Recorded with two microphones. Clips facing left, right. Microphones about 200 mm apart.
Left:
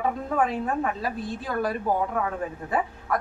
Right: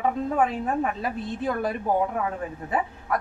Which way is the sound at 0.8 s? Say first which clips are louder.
Right 1 dB; 20° right (ahead or behind).